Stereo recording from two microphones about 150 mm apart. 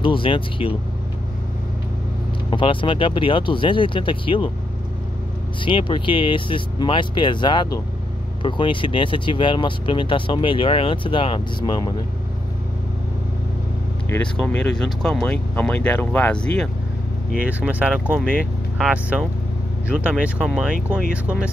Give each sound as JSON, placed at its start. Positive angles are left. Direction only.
{"t": 0.0, "sound": "speech", "side_deg": 35}
{"t": 2.5, "sound": "speech", "side_deg": 35}
{"t": 5.7, "sound": "speech", "side_deg": 35}
{"t": 14.2, "sound": "speech", "side_deg": 5}
{"t": 17.5, "sound": "speech", "side_deg": -10}